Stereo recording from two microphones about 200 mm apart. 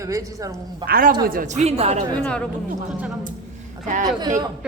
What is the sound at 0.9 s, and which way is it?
Speech, 45° right (ahead or behind).